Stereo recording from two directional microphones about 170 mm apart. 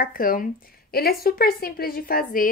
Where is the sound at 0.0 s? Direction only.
55° left (ahead or behind).